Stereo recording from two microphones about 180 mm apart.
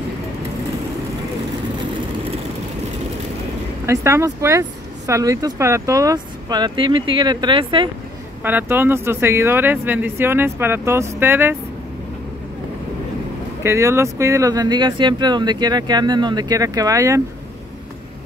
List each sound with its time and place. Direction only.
3.8 s speech: 15° right (ahead or behind)
8.5 s speech: 10° right (ahead or behind)
13.6 s speech: 15° right (ahead or behind)